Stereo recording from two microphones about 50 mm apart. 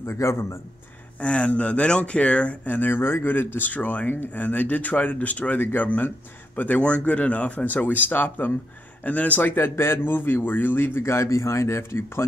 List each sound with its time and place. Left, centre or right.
0.0 s speech: left
1.2 s speech: left
2.6 s speech: left
3.5 s speech: left
9.6 s speech: left
10.1 s speech: left
11.0 s speech: left